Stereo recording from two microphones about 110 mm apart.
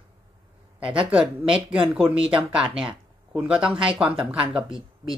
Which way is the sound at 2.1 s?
55° right (ahead or behind).